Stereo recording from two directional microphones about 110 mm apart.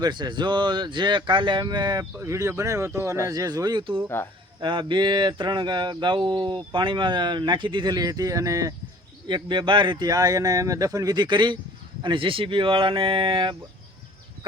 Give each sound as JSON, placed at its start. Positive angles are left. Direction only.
{"t": 0.0, "sound": "speech", "side_deg": -45}
{"t": 2.1, "sound": "speech", "side_deg": -25}
{"t": 9.2, "sound": "speech", "side_deg": -45}